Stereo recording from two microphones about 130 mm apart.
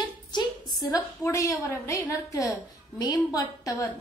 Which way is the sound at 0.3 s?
35° left (ahead or behind).